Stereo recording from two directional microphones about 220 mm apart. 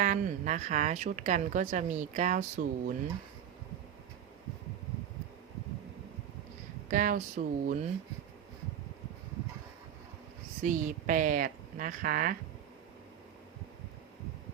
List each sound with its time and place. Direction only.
0.0 s speech: 35° right (ahead or behind)
6.9 s speech: 35° right (ahead or behind)
10.6 s speech: 35° right (ahead or behind)